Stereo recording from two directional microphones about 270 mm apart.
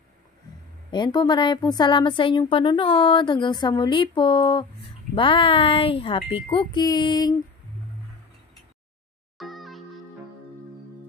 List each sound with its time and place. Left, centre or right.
0.9 s speech: centre
9.4 s music: centre